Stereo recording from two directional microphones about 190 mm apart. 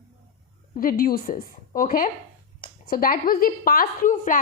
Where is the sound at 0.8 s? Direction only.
50° left (ahead or behind).